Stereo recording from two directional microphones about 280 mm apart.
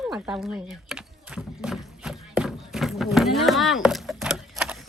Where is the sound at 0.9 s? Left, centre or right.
Centre.